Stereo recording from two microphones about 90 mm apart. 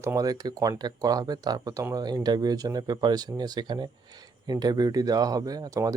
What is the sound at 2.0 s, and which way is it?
Speech, 50° right (ahead or behind).